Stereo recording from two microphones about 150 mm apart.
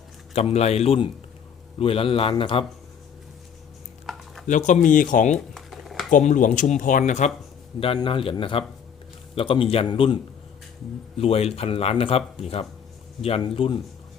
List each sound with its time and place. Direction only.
0.3 s speech: 45° left (ahead or behind)
4.1 s a sound: centre (ahead or behind)
4.4 s speech: 55° left (ahead or behind)
5.5 s typing: centre (ahead or behind)
6.1 s speech: 60° left (ahead or behind)
7.9 s speech: 35° left (ahead or behind)
11.2 s speech: 40° left (ahead or behind)